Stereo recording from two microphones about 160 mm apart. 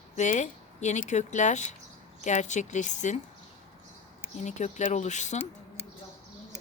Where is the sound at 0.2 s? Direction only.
50° left (ahead or behind).